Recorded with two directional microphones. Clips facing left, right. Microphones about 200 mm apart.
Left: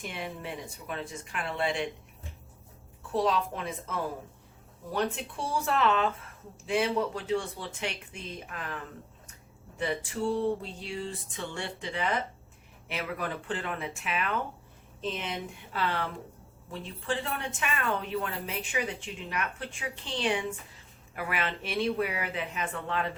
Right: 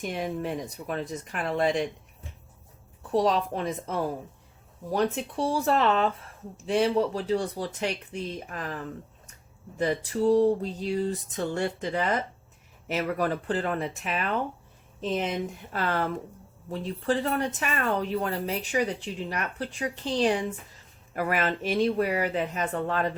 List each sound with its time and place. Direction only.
0.0 s speech: 40° right (ahead or behind)
3.1 s speech: 35° right (ahead or behind)